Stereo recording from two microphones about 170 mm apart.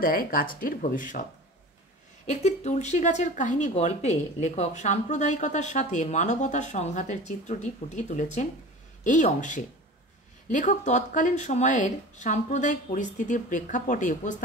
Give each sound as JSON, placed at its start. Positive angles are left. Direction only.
{"t": 0.0, "sound": "speech", "side_deg": 60}
{"t": 2.2, "sound": "speech", "side_deg": 40}